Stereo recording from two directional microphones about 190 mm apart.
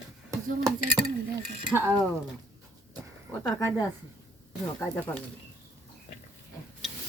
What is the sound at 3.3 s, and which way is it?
Speech, 10° left (ahead or behind).